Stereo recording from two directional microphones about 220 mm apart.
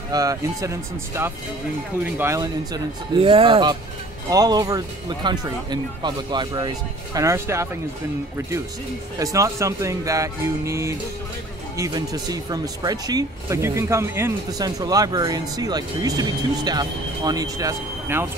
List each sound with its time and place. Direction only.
0.1 s speech: 15° right (ahead or behind)
9.2 s speech: 15° right (ahead or behind)